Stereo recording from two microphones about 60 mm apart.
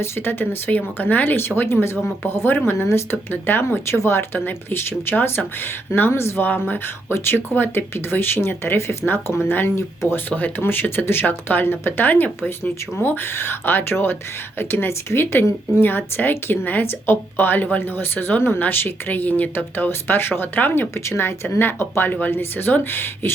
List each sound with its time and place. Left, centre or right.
0.0 s speech: left
4.4 s speech: left
9.7 s speech: left
10.2 s speech: left
20.9 s speech: left